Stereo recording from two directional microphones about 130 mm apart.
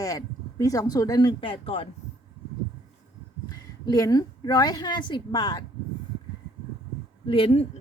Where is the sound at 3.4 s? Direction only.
30° left (ahead or behind).